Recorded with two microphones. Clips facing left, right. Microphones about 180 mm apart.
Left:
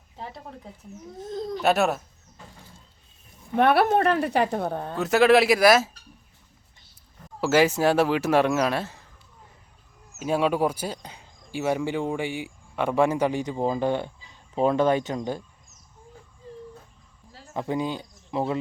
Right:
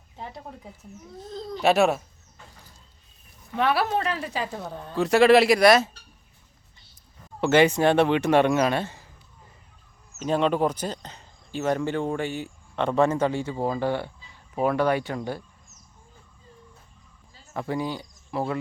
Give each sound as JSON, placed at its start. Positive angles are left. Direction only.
{"t": 1.2, "sound": "speech", "side_deg": 20}
{"t": 1.6, "sound": "speech", "side_deg": 0}
{"t": 3.5, "sound": "speech", "side_deg": 55}
{"t": 4.9, "sound": "speech", "side_deg": 0}
{"t": 7.4, "sound": "speech", "side_deg": 5}
{"t": 10.2, "sound": "speech", "side_deg": 5}
{"t": 17.5, "sound": "speech", "side_deg": 20}